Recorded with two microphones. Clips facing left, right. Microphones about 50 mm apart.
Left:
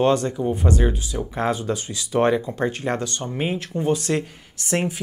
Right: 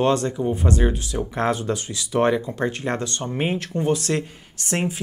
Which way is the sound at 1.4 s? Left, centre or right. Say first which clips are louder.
Even; right.